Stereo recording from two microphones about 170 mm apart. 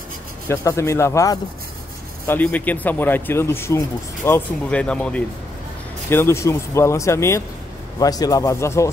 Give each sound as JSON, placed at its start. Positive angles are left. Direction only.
{"t": 0.5, "sound": "speech", "side_deg": 15}